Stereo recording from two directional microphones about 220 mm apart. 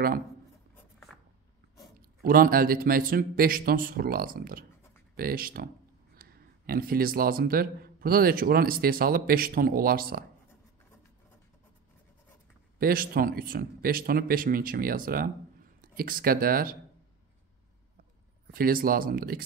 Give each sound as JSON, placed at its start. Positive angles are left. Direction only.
{"t": 2.0, "sound": "speech", "side_deg": -40}
{"t": 12.7, "sound": "speech", "side_deg": -40}
{"t": 18.5, "sound": "speech", "side_deg": -40}